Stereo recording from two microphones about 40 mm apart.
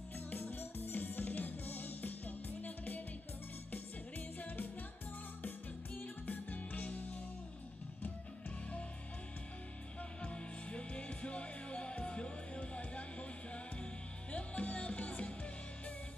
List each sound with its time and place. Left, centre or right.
0.3 s music: left
5.9 s music: left
10.2 s music: left
14.3 s music: left